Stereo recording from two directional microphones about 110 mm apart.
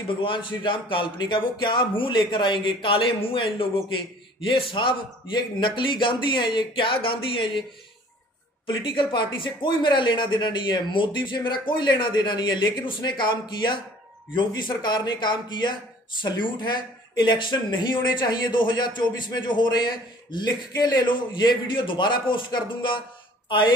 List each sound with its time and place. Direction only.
0.2 s speech: 50° left (ahead or behind)
8.6 s speech: 50° left (ahead or behind)